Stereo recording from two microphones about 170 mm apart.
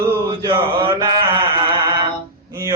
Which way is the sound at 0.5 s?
15° right (ahead or behind).